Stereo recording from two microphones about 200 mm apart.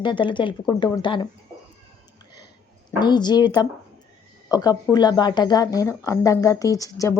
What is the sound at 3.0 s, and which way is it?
Speech, 20° left (ahead or behind).